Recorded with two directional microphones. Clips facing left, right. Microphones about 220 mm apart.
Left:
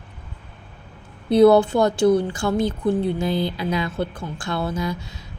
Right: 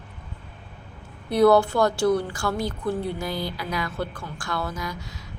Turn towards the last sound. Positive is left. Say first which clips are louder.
# left 7 dB
turn(degrees=25)  # may be behind; listen again after turning